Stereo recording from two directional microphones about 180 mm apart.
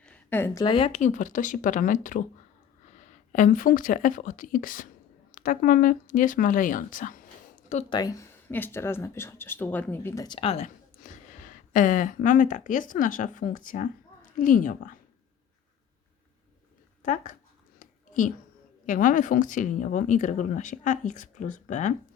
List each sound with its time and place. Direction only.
0.0 s a sound: 10° left (ahead or behind)
0.6 s speech: 30° left (ahead or behind); by 2.2 s 45° left (ahead or behind)
3.3 s speech: 45° left (ahead or behind)
7.9 s speech: 20° left (ahead or behind)
10.2 s speech: 30° left (ahead or behind); by 14.8 s 50° left (ahead or behind)
17.7 s a sound: 45° left (ahead or behind)
18.9 s speech: 45° left (ahead or behind)